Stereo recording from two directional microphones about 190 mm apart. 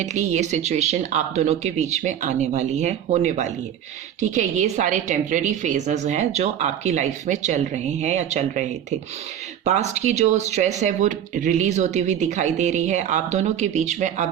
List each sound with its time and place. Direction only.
0.0 s a woman's voice: 35° right (ahead or behind)